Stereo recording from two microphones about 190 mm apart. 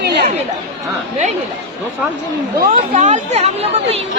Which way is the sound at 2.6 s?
40° right (ahead or behind).